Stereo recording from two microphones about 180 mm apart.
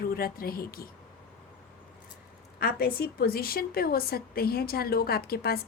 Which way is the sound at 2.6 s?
55° left (ahead or behind).